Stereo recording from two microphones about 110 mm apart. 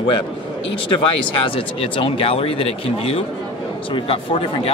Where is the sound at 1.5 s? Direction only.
55° left (ahead or behind).